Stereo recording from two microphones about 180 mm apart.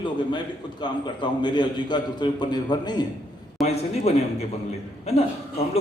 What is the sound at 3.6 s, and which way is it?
A man's voice, 35° left (ahead or behind).